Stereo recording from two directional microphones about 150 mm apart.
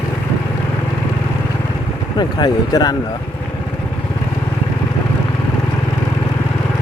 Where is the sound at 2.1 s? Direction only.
25° left (ahead or behind).